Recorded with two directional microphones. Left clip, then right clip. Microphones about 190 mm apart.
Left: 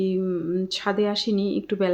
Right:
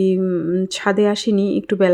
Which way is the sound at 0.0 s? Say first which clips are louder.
Right 7 dB; 40° right (ahead or behind).